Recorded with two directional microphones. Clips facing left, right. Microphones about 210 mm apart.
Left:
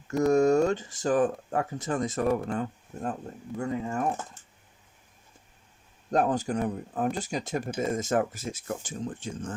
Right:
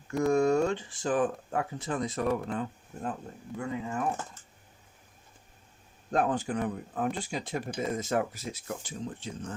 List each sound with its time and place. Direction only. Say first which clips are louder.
0.2 s speech: left 3 dB; 40° left (ahead or behind)
6.1 s speech: left 3 dB; 40° left (ahead or behind)